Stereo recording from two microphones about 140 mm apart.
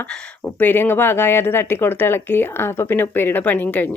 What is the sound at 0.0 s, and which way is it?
Speech, 10° left (ahead or behind).